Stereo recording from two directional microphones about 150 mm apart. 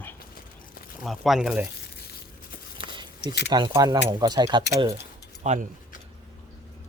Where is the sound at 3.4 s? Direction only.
30° right (ahead or behind).